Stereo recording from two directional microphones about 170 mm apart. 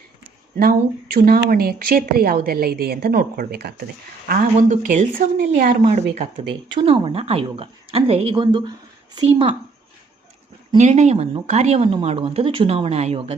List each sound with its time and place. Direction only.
0.5 s a woman's voice: 60° right (ahead or behind)
4.3 s speech: 50° right (ahead or behind)
6.5 s a woman's voice: 30° right (ahead or behind)
10.8 s a woman's voice: 40° right (ahead or behind)